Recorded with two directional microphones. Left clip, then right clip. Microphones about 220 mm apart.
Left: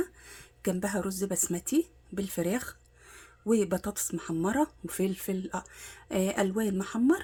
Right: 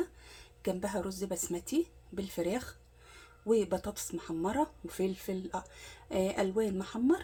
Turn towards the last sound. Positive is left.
turn(degrees=40)  # may be behind; listen again after turning